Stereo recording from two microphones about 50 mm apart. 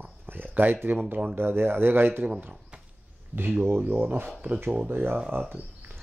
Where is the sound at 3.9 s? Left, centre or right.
Right.